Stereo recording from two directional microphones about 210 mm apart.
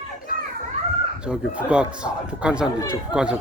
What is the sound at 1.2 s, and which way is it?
Speech, 5° right (ahead or behind).